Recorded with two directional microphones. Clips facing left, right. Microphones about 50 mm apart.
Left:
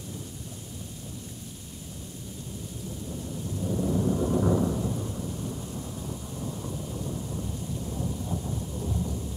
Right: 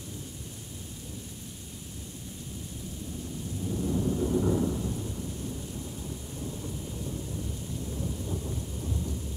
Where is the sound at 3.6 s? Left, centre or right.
Left.